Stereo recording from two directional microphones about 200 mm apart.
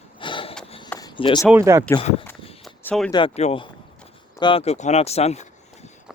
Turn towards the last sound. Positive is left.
turn(degrees=30)  # may be behind; listen again after turning